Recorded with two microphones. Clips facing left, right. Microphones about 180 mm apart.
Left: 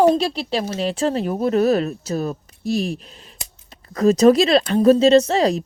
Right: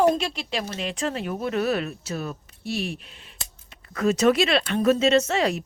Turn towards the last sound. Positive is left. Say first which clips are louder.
# left 6 dB
turn(degrees=35)  # may be behind; listen again after turning